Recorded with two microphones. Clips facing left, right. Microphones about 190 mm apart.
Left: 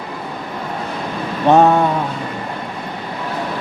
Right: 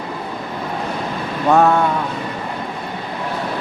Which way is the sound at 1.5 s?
20° left (ahead or behind).